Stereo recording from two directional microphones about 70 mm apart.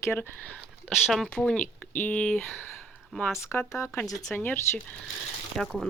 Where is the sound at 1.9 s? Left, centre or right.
Left.